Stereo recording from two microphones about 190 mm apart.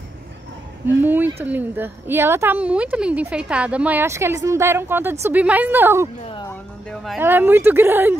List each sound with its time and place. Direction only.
0.8 s a woman's voice: 10° right (ahead or behind)
6.2 s music: 25° left (ahead or behind)
7.2 s a woman's voice: 10° right (ahead or behind)